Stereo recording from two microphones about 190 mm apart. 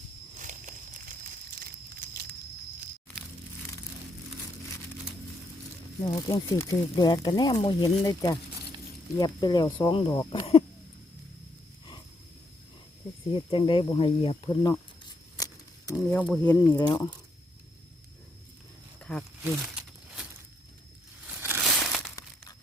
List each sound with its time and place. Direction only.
0.3 s a sound: 40° right (ahead or behind)
6.0 s speech: 20° left (ahead or behind)
13.3 s speech: 25° left (ahead or behind)
15.4 s a sound: 20° left (ahead or behind)
16.0 s speech: centre (ahead or behind)
16.7 s speech: 20° left (ahead or behind)
18.9 s wild animals: 5° left (ahead or behind)
19.5 s a sound: 5° right (ahead or behind)
21.2 s crushing: 10° right (ahead or behind)